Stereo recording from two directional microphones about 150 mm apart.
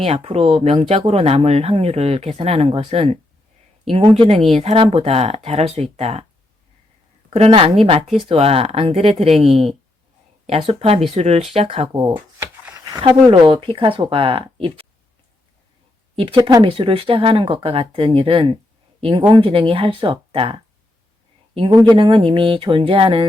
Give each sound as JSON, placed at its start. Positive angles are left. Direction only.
{"t": 0.0, "sound": "speech", "side_deg": -45}
{"t": 7.3, "sound": "a woman's voice", "side_deg": -40}
{"t": 11.9, "sound": "speech", "side_deg": -25}
{"t": 16.1, "sound": "speech", "side_deg": -35}